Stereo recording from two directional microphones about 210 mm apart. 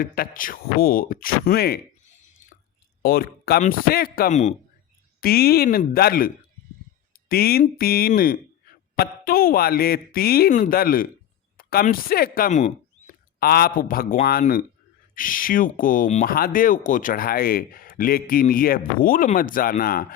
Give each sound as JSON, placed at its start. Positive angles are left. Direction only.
{"t": 0.0, "sound": "speech", "side_deg": 40}
{"t": 5.2, "sound": "speech", "side_deg": 45}
{"t": 13.4, "sound": "speech", "side_deg": 45}